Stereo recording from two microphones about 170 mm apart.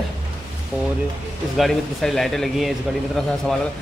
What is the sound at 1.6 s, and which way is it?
A man's voice, centre (ahead or behind).